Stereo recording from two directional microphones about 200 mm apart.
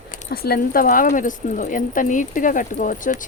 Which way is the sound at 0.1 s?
50° left (ahead or behind).